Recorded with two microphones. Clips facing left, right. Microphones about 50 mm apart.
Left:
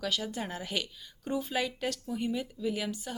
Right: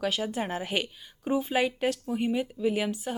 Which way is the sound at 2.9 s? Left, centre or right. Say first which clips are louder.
Right 6 dB; centre.